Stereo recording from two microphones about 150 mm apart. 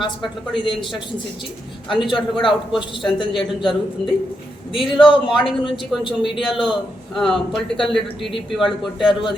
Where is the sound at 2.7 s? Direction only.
Centre (ahead or behind).